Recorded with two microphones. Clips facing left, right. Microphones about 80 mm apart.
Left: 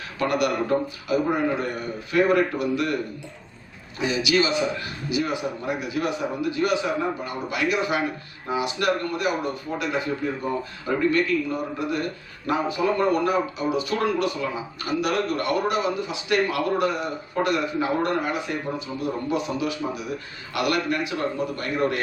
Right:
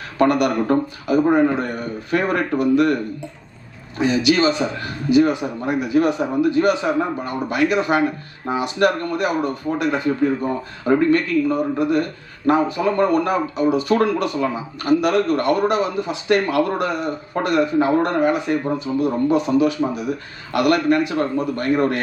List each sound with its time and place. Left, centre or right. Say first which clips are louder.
0.2 s speech: right 6 dB; right
3.9 s speech: right 5 dB; right